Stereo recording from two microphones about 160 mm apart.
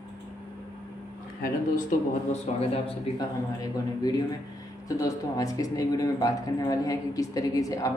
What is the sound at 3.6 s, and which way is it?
Speech, 25° left (ahead or behind).